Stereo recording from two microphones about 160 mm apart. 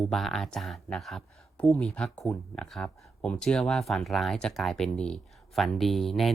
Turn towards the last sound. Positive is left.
turn(degrees=0)  # may be behind; listen again after turning